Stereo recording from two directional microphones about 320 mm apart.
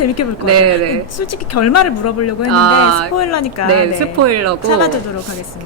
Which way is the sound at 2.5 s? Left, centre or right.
Right.